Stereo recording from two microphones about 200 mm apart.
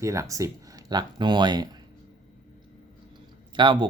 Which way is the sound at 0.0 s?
15° right (ahead or behind).